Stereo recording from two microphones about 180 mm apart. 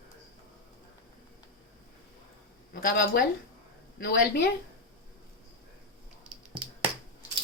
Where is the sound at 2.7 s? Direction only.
55° left (ahead or behind).